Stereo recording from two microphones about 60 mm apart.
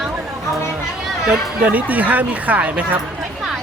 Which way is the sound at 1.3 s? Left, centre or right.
Right.